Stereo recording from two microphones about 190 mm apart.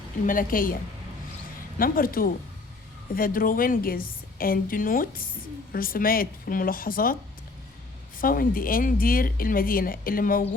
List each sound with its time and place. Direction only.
0.3 s speech: 45° left (ahead or behind)
1.8 s speech: 50° left (ahead or behind)
8.2 s speech: 45° left (ahead or behind)